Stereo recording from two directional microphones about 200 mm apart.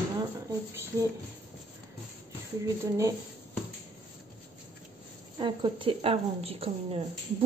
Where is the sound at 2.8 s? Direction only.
15° right (ahead or behind).